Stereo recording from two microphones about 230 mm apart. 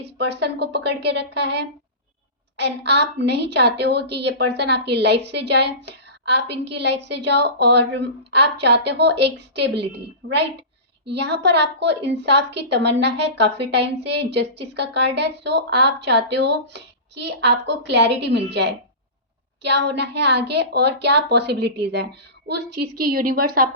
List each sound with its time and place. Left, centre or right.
0.0 s a woman's voice: right